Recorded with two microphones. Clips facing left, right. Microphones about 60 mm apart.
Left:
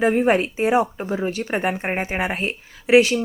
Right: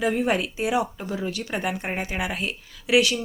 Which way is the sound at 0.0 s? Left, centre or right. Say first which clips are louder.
Left 5 dB; left.